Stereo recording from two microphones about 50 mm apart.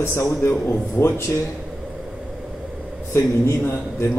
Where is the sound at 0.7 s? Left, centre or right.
Left.